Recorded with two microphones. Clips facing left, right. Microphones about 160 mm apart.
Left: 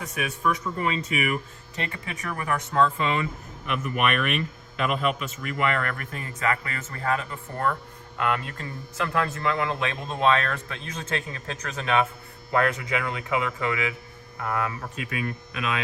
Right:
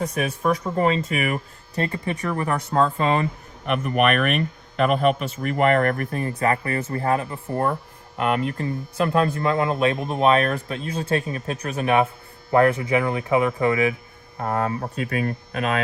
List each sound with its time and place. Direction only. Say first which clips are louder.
0.0 s speech: right 4 dB; 40° right (ahead or behind)